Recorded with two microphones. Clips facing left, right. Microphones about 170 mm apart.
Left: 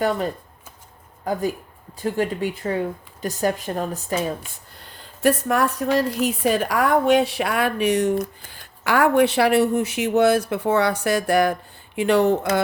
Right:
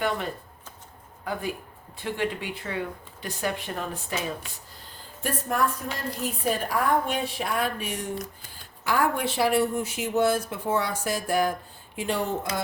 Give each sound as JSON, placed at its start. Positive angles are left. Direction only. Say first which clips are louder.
{"t": 1.2, "sound": "speech", "louder": "left 7 dB", "side_deg": 40}
{"t": 4.8, "sound": "a woman's voice", "louder": "left 13 dB", "side_deg": 75}